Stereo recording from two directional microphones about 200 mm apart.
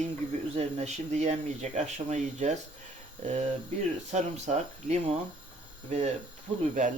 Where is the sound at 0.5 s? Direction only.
35° right (ahead or behind).